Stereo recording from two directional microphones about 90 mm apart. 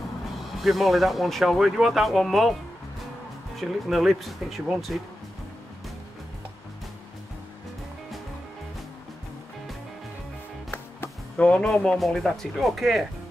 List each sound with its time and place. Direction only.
0.6 s speech: centre (ahead or behind)
3.5 s speech: centre (ahead or behind)
10.7 s music: 20° left (ahead or behind)
11.6 s speech: 10° left (ahead or behind)